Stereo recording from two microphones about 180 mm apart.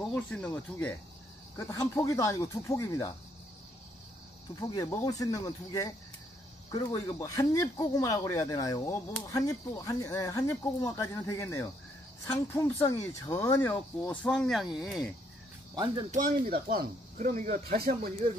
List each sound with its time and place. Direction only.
0.0 s speech: 5° left (ahead or behind)
4.6 s speech: 20° left (ahead or behind); by 15.1 s centre (ahead or behind)
15.7 s speech: 20° right (ahead or behind)
16.1 s speech: 50° right (ahead or behind)